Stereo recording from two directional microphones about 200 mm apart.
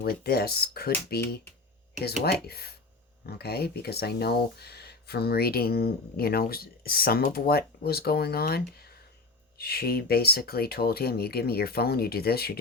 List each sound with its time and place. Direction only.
0.0 s speech: 50° left (ahead or behind)
2.2 s speech: 50° left (ahead or behind)